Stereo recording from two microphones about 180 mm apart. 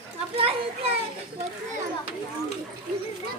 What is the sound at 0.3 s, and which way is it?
Children playing, 30° right (ahead or behind).